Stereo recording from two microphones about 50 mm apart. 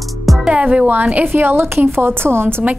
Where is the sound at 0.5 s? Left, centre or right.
Right.